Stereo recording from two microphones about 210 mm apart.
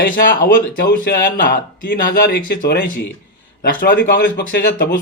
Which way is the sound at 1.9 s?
50° left (ahead or behind).